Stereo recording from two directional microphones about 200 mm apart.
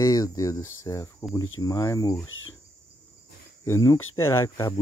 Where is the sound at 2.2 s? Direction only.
90° left.